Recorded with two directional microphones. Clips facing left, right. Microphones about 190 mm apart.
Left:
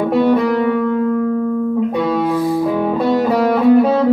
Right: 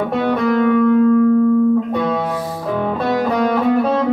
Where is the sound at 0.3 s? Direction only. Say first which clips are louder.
Left 3 dB; 10° left (ahead or behind).